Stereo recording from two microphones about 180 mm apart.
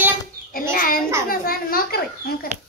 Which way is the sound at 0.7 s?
50° left (ahead or behind).